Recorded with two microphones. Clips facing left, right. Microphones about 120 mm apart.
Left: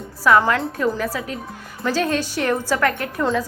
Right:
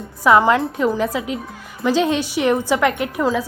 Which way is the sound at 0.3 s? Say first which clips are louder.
Right 3 dB; 20° right (ahead or behind).